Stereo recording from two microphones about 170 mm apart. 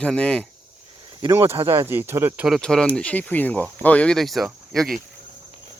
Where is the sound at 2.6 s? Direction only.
5° left (ahead or behind).